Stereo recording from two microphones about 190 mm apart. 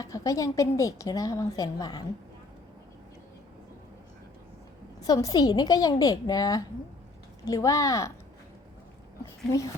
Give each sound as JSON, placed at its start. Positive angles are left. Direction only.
{"t": 0.0, "sound": "a woman's voice", "side_deg": 20}
{"t": 5.0, "sound": "a woman's voice", "side_deg": 20}